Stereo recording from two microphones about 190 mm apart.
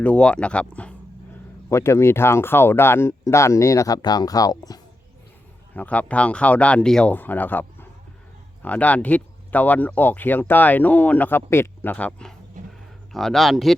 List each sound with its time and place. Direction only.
0.0 s speech: 5° left (ahead or behind)
5.7 s speech: 10° left (ahead or behind)
12.6 s a sound: 40° right (ahead or behind)
13.1 s speech: centre (ahead or behind)